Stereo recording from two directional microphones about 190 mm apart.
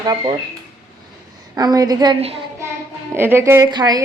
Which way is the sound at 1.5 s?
20° right (ahead or behind).